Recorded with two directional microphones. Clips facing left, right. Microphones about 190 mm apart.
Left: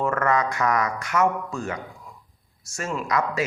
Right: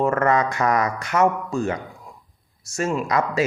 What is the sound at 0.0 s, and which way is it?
Speech, 25° right (ahead or behind).